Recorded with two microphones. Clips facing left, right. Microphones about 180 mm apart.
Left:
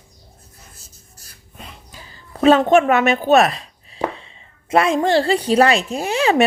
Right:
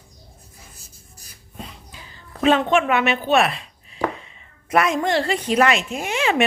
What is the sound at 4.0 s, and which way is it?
Speech, 30° left (ahead or behind).